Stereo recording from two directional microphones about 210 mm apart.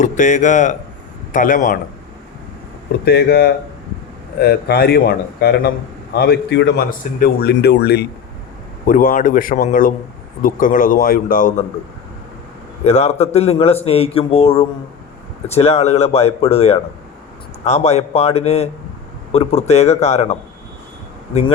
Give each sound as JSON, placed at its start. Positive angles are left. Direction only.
{"t": 0.0, "sound": "speech", "side_deg": 35}
{"t": 3.0, "sound": "a man's voice", "side_deg": 50}
{"t": 8.9, "sound": "speech", "side_deg": 40}
{"t": 12.8, "sound": "a man's voice", "side_deg": 30}